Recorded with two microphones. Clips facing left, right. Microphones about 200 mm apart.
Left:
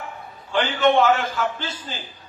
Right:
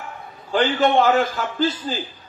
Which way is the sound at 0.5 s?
35° right (ahead or behind).